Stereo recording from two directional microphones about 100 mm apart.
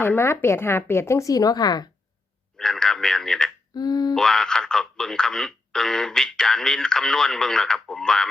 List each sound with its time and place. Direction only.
0.0 s a woman's voice: 25° left (ahead or behind); by 1.9 s 45° left (ahead or behind)
2.6 s speech: 5° left (ahead or behind)
3.8 s a sound: 40° left (ahead or behind)
4.1 s speech: 5° left (ahead or behind)